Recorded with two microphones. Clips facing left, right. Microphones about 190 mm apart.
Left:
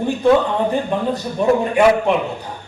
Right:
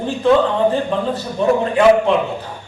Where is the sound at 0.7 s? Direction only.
15° left (ahead or behind).